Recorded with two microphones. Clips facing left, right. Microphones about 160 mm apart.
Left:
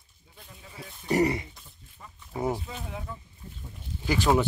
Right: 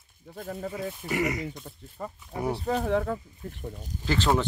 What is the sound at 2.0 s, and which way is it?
Speech, 60° right (ahead or behind).